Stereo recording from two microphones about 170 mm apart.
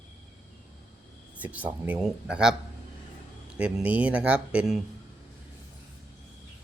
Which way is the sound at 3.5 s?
5° right (ahead or behind).